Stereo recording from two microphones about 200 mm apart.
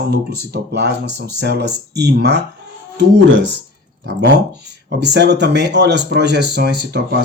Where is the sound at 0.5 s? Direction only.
55° right (ahead or behind).